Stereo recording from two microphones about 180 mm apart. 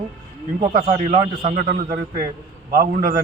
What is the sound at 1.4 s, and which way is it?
A man's voice, 50° right (ahead or behind).